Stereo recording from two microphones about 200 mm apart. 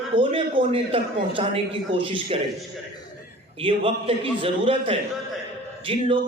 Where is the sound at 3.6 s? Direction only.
30° right (ahead or behind).